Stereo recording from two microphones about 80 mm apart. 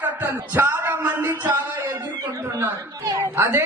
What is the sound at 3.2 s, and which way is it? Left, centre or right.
Speech, right.